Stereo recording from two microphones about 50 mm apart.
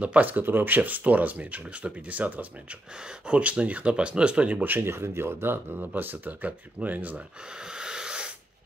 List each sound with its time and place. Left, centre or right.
0.0 s speech: right
3.0 s speech: centre
3.3 s speech: right
4.6 s speech: right
5.8 s speech: right
7.4 s wheeze: centre